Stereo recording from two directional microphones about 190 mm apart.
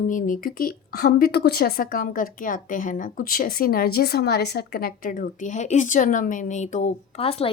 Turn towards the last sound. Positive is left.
turn(degrees=30)  # may be behind; listen again after turning